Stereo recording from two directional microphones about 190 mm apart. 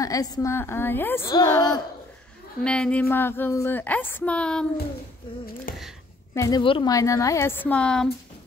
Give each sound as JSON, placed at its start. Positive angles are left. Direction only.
{"t": 0.0, "sound": "a woman's voice", "side_deg": 20}
{"t": 2.6, "sound": "a woman's voice", "side_deg": 5}
{"t": 6.3, "sound": "a woman's voice", "side_deg": 20}